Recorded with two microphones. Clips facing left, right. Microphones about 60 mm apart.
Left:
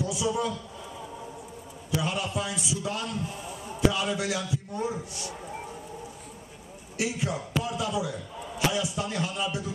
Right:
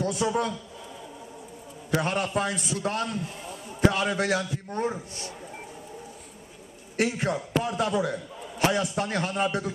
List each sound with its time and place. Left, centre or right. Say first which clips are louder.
0.0 s a man's voice: right 2 dB; right
1.9 s a man's voice: right 3 dB; right
7.0 s a man's voice: right 4 dB; right